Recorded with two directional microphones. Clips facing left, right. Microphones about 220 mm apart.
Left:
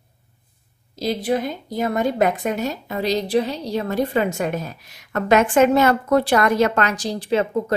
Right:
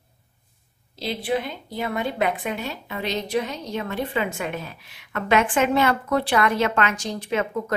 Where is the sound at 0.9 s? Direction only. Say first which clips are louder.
Left 4 dB; 40° left (ahead or behind).